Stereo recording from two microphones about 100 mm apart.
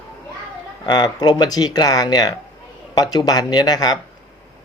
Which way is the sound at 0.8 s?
45° left (ahead or behind).